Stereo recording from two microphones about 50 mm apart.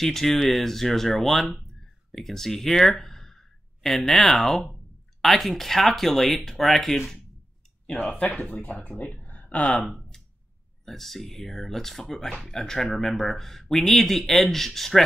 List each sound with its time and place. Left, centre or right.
0.0 s speech: centre
2.1 s speech: centre
8.2 s speech: left
9.2 s a sound: left
9.6 s speech: centre
9.8 s a sound: centre
10.9 s speech: centre